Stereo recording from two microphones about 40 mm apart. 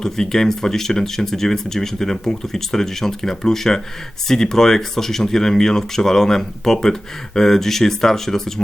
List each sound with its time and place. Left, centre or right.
0.0 s speech: centre